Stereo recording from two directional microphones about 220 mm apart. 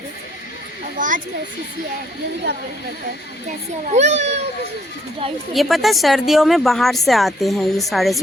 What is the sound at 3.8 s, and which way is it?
Speech, 30° right (ahead or behind).